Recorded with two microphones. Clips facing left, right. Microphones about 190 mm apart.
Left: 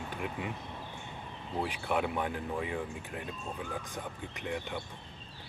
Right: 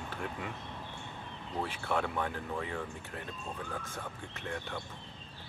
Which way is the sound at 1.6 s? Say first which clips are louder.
Left 2 dB; 15° left (ahead or behind).